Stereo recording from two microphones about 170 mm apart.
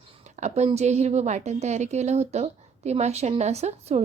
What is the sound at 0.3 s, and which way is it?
A woman's voice, 40° right (ahead or behind).